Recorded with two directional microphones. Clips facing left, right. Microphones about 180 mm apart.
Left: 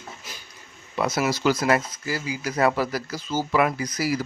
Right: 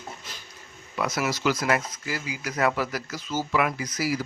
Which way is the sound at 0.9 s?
30° left (ahead or behind).